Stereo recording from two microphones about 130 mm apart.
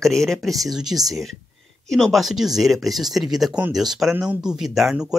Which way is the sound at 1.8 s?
Centre (ahead or behind).